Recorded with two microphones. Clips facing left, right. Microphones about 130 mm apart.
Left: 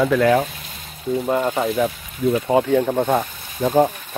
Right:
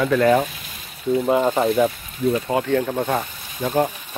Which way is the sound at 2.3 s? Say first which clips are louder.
Left 5 dB; 25° left (ahead or behind).